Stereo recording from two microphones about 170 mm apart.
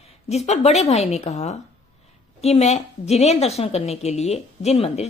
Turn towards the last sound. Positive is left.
turn(degrees=40)  # may be behind; listen again after turning